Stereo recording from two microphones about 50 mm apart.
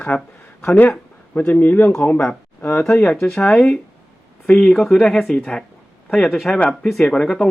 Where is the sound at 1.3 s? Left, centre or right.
Left.